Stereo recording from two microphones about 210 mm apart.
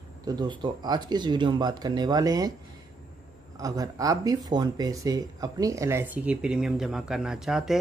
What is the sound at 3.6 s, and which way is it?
Speech, 15° right (ahead or behind).